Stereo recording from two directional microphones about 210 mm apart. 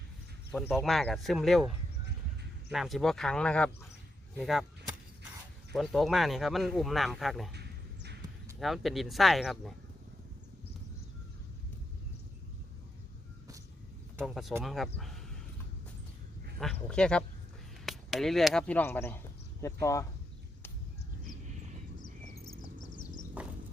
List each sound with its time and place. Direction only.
0.5 s speech: centre (ahead or behind)
2.7 s speech: centre (ahead or behind)
4.4 s vehicle: centre (ahead or behind)
5.7 s speech: centre (ahead or behind)
7.5 s a sound: 50° right (ahead or behind)
8.5 s speech: centre (ahead or behind)
14.2 s speech: centre (ahead or behind)
16.6 s speech: 5° left (ahead or behind)
22.8 s a sound: 40° left (ahead or behind)